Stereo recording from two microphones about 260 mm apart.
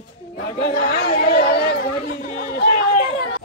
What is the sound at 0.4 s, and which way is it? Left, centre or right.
Chatter, left.